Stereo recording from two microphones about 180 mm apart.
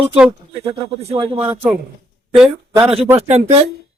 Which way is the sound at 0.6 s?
35° right (ahead or behind).